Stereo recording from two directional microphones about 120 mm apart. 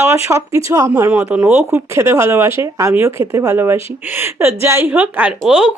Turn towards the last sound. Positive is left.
turn(degrees=-10)  # may be behind; listen again after turning